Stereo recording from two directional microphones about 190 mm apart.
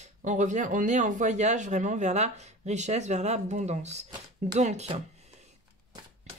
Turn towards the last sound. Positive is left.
turn(degrees=-35)  # may be behind; listen again after turning